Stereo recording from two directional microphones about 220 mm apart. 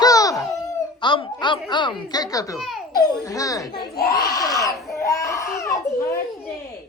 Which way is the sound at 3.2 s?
15° left (ahead or behind).